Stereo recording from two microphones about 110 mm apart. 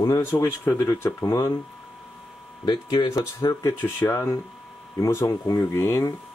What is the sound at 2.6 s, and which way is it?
Speech, 40° left (ahead or behind).